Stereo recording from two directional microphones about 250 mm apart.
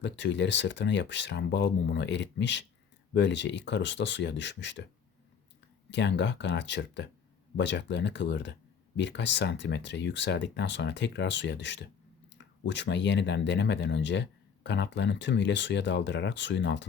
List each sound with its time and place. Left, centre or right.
0.0 s speech: left
5.9 s speech: left